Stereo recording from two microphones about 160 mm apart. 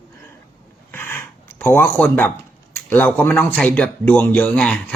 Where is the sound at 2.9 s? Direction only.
10° left (ahead or behind).